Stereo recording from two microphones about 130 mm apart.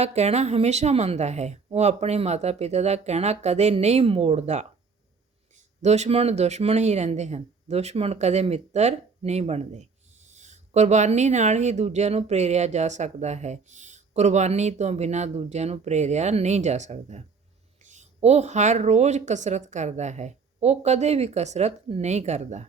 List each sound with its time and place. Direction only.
0.0 s speech: 55° right (ahead or behind)
5.8 s speech: 60° right (ahead or behind)